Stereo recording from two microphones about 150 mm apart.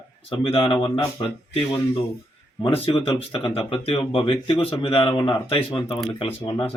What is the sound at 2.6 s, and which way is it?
Speech, 35° left (ahead or behind).